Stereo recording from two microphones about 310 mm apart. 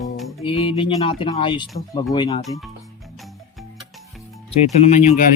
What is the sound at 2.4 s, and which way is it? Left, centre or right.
Speech, centre.